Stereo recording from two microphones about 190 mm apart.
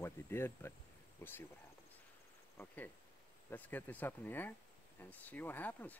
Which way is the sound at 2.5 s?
10° left (ahead or behind).